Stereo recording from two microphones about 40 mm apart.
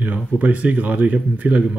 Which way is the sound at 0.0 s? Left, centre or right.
Right.